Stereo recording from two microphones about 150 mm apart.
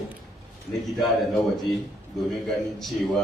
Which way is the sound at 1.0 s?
Centre (ahead or behind).